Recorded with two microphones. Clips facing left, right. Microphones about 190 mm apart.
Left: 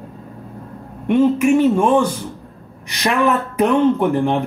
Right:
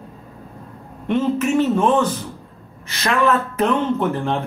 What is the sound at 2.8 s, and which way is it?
Speech, 15° left (ahead or behind).